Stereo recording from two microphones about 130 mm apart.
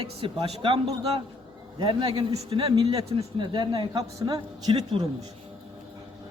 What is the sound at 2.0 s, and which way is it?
A man's voice, 30° right (ahead or behind).